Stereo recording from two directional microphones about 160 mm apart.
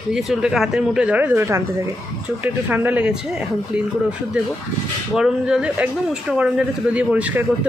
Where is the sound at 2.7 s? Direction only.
10° right (ahead or behind).